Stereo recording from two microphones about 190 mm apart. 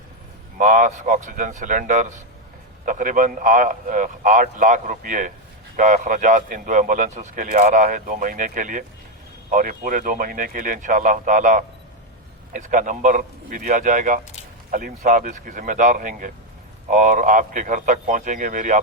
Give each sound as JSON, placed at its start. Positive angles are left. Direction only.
{"t": 0.6, "sound": "speech", "side_deg": -45}